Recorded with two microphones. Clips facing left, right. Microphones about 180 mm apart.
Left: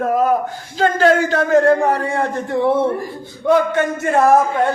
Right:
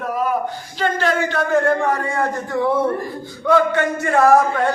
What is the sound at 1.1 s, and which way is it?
A man's voice, 35° left (ahead or behind).